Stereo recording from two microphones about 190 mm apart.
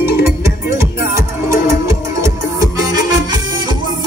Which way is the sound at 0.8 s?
15° right (ahead or behind).